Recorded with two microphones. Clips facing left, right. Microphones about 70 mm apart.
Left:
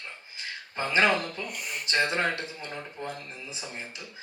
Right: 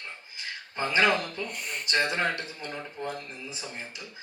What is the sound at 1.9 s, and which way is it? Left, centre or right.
Speech, left.